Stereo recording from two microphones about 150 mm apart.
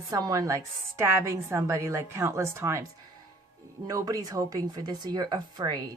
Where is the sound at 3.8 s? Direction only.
25° right (ahead or behind).